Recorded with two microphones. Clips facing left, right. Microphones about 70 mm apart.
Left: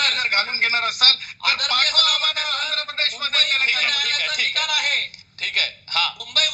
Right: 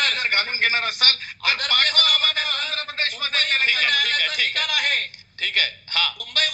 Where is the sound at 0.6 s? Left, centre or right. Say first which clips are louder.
Even; right.